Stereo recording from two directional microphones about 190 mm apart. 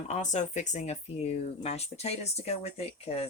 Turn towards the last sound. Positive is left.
turn(degrees=30)  # may be behind; listen again after turning